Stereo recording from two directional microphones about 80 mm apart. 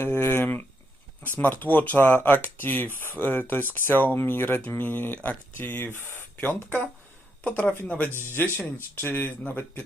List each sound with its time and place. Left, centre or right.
0.0 s speech: left